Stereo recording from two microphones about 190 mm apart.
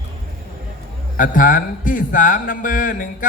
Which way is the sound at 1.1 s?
45° left (ahead or behind).